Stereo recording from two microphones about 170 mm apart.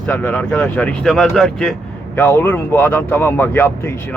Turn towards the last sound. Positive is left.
turn(degrees=10)  # may be behind; listen again after turning